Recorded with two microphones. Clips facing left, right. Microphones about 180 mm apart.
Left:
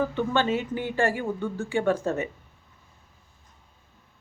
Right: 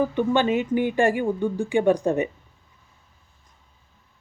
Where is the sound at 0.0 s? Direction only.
15° right (ahead or behind).